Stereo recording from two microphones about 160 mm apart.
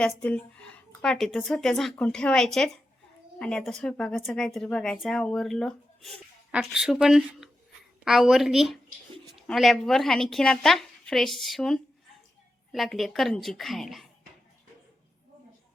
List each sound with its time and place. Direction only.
0.0 s speech: 5° left (ahead or behind)